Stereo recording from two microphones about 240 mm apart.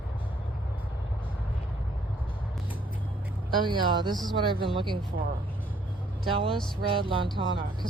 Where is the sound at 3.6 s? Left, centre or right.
Centre.